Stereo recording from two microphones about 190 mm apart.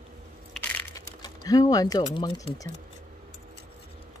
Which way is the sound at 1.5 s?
20° left (ahead or behind).